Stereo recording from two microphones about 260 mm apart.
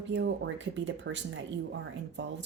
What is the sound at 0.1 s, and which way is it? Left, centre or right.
Speech, right.